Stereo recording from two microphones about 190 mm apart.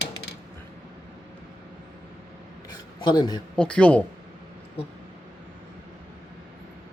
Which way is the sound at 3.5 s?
5° left (ahead or behind).